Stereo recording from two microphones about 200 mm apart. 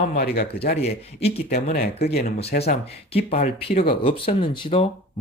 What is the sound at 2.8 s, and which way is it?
Speech, 30° left (ahead or behind).